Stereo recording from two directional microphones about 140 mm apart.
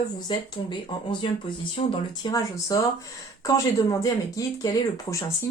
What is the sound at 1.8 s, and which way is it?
Speech, 50° left (ahead or behind).